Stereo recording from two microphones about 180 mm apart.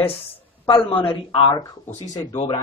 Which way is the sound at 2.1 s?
20° left (ahead or behind).